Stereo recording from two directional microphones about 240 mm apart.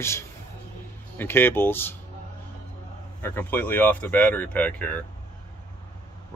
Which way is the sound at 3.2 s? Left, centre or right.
Centre.